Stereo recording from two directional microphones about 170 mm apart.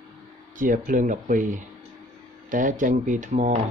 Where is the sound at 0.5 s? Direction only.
50° right (ahead or behind).